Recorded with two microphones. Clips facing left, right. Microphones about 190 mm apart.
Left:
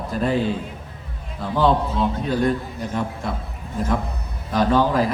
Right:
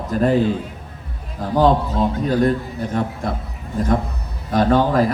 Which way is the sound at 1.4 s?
40° right (ahead or behind).